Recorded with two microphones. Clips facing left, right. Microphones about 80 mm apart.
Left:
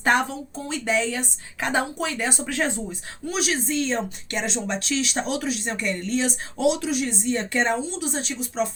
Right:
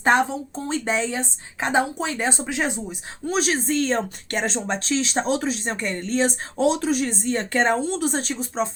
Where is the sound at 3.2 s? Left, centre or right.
Right.